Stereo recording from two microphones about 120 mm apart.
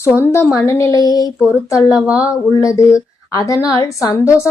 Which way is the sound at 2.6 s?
25° left (ahead or behind).